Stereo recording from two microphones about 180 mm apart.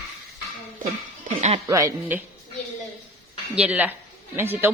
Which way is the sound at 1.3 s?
40° right (ahead or behind).